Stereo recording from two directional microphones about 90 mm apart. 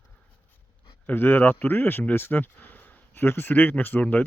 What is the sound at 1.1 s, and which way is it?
Speech, 20° left (ahead or behind).